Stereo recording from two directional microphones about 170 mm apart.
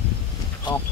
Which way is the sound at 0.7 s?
25° left (ahead or behind).